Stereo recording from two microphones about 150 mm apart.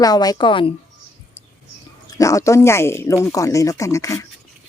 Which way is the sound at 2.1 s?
20° left (ahead or behind).